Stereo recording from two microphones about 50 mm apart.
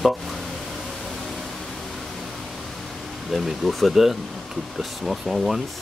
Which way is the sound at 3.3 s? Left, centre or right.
Centre.